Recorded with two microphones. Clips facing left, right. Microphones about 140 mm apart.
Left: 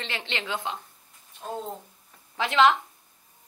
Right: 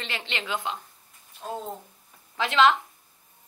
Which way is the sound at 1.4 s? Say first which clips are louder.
Even; centre (ahead or behind).